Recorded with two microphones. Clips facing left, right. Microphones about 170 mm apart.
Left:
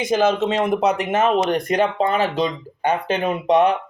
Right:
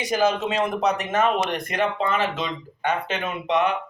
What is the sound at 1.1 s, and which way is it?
Speech, 35° left (ahead or behind).